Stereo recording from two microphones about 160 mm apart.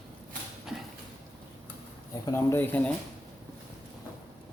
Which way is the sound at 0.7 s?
5° right (ahead or behind).